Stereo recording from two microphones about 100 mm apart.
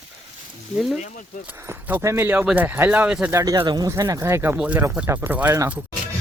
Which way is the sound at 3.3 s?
30° right (ahead or behind).